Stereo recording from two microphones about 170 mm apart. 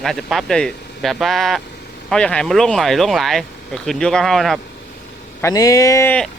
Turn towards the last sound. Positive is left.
turn(degrees=20)  # may be behind; listen again after turning